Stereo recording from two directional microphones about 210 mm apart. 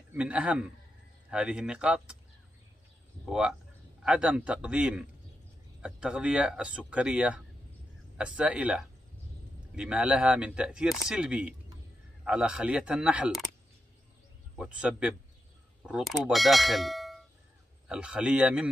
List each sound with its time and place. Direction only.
0.1 s speech: 5° right (ahead or behind)
3.3 s speech: 5° right (ahead or behind)
14.5 s speech: 5° right (ahead or behind)